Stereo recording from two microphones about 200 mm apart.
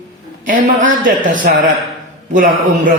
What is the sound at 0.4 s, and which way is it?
A woman's voice, 40° right (ahead or behind).